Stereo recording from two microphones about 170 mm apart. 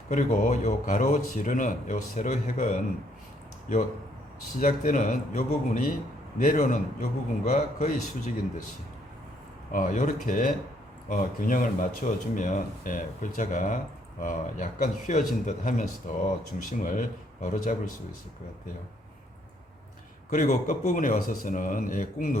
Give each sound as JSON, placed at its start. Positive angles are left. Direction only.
{"t": 0.1, "sound": "speech", "side_deg": 45}
{"t": 9.7, "sound": "speech", "side_deg": 50}
{"t": 20.3, "sound": "speech", "side_deg": 50}